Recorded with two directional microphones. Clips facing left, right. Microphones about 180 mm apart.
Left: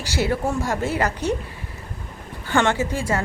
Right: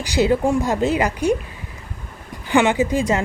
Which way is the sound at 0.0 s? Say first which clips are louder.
Right 5 dB; 15° right (ahead or behind).